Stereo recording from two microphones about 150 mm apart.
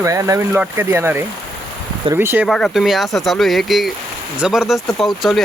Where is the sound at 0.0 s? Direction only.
20° right (ahead or behind).